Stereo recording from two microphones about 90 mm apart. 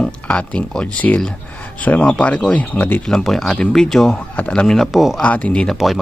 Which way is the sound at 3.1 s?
5° left (ahead or behind).